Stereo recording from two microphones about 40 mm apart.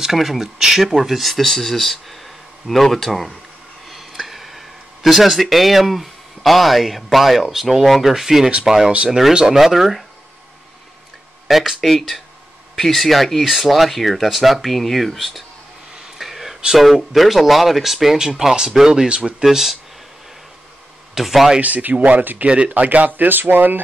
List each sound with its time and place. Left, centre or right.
0.0 s speech: centre
1.4 s speech: centre
3.9 s a sound: centre
7.5 s speech: centre
11.4 s a sound: centre
11.8 s speech: centre
16.2 s a sound: centre
16.7 s speech: centre
19.0 s speech: right
19.4 s speech: centre
21.1 s speech: centre
21.5 s speech: right
22.1 s speech: right